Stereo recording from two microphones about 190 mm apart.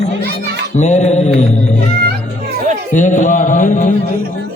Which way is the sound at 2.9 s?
40° left (ahead or behind).